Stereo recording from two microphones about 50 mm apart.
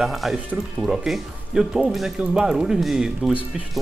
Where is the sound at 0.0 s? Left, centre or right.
Centre.